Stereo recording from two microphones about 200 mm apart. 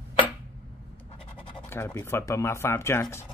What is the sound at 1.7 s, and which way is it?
Speech, 10° left (ahead or behind).